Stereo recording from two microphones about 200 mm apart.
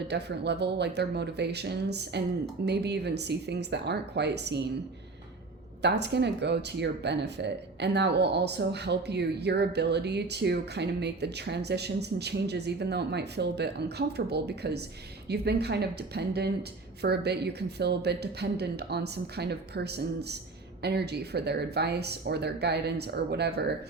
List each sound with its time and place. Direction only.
0.1 s speech: 55° right (ahead or behind)
5.8 s speech: 60° right (ahead or behind)